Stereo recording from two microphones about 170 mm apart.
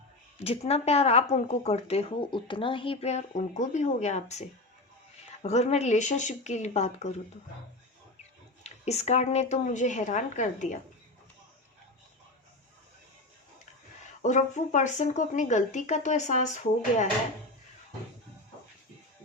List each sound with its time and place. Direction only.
0.3 s speech: 35° left (ahead or behind)
8.6 s speech: 40° left (ahead or behind)
14.0 s speech: 45° left (ahead or behind)